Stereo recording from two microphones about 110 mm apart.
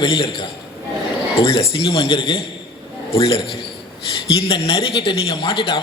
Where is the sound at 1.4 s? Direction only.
60° left (ahead or behind).